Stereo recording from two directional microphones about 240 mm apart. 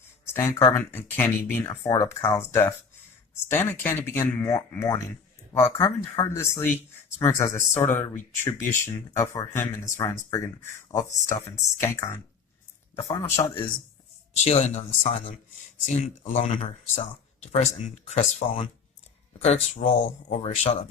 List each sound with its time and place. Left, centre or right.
0.3 s speech: centre
14.3 s speech: left